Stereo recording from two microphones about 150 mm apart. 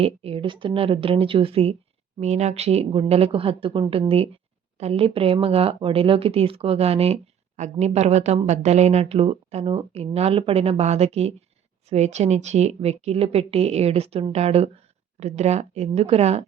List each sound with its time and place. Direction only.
0.0 s speech: 40° right (ahead or behind)